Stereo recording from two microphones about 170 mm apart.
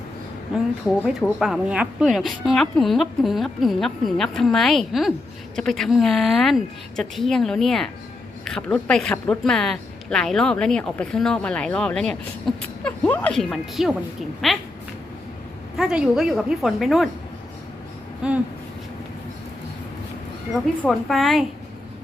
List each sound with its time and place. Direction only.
0.5 s speech: centre (ahead or behind)
15.8 s speech: 5° right (ahead or behind)
18.2 s speech: 5° right (ahead or behind)
20.8 s speech: centre (ahead or behind)